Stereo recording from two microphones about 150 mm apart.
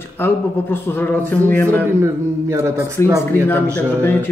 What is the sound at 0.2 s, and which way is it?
A man's voice, 15° left (ahead or behind).